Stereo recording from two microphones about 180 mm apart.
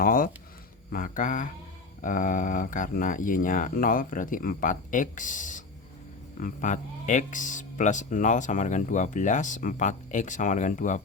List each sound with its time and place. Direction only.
0.0 s speech: 50° left (ahead or behind)